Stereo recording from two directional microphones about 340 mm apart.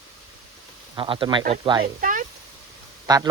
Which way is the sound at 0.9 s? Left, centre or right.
Centre.